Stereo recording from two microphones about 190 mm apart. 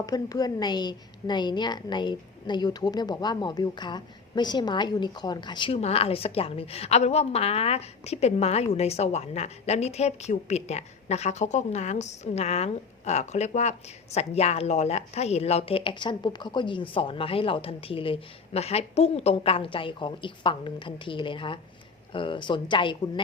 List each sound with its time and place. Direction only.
0.0 s a woman's voice: 20° left (ahead or behind)